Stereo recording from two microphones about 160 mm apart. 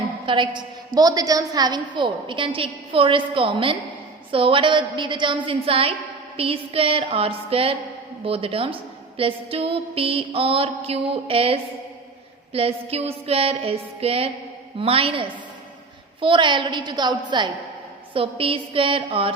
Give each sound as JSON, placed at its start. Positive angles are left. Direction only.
{"t": 0.3, "sound": "a woman's voice", "side_deg": -30}